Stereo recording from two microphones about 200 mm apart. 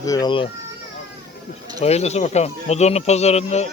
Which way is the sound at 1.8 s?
35° left (ahead or behind).